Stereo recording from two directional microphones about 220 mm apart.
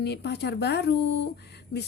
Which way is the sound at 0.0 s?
50° left (ahead or behind).